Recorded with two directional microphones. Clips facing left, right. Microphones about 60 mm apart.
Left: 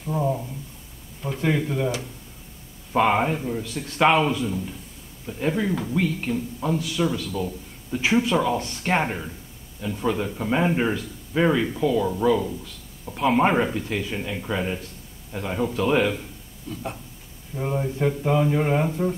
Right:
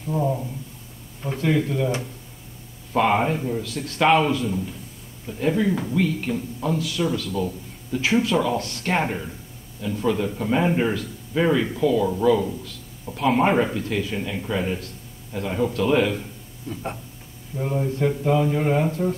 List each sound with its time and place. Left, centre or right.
0.0 s a man's voice: centre
2.9 s a man's voice: centre
16.6 s speech: centre
17.6 s a man's voice: centre